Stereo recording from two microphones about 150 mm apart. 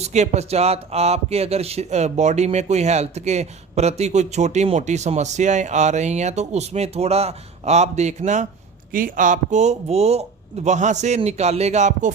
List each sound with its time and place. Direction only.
0.0 s speech: 50° right (ahead or behind)
8.9 s speech: 65° right (ahead or behind); by 12.1 s 50° right (ahead or behind)